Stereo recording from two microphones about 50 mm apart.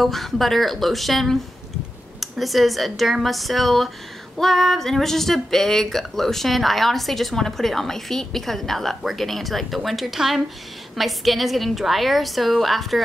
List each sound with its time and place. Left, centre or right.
0.0 s speech: centre